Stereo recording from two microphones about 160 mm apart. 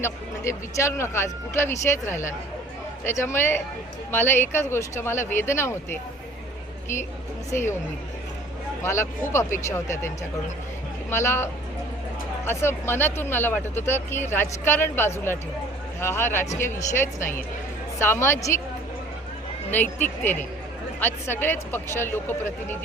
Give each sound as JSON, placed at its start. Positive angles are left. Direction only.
{"t": 0.0, "sound": "speech", "side_deg": 15}
{"t": 7.5, "sound": "speech", "side_deg": 15}
{"t": 8.8, "sound": "speech", "side_deg": 15}
{"t": 11.1, "sound": "speech", "side_deg": 15}
{"t": 12.5, "sound": "speech", "side_deg": 15}
{"t": 19.7, "sound": "speech", "side_deg": 10}